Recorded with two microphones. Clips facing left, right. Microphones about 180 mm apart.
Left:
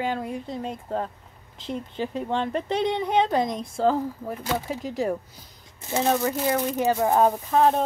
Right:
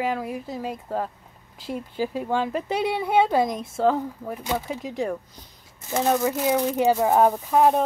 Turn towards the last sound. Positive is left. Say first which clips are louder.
# right 1 dB
turn(degrees=-10)  # may be behind; listen again after turning